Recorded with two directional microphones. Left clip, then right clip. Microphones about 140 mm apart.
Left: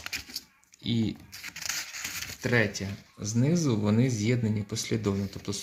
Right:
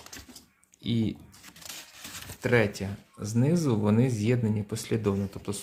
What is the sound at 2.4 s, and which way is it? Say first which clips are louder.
Speech: right 2 dB; 5° right (ahead or behind).